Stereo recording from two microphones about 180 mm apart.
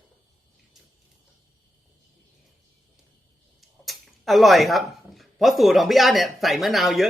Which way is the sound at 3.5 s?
Centre (ahead or behind).